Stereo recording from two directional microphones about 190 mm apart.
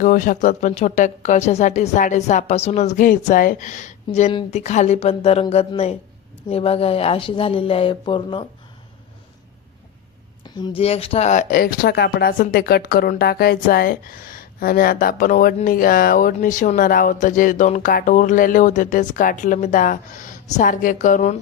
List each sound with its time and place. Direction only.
0.0 s speech: 45° left (ahead or behind); by 8.4 s 25° left (ahead or behind)
10.4 s speech: 25° left (ahead or behind); by 21.3 s 40° left (ahead or behind)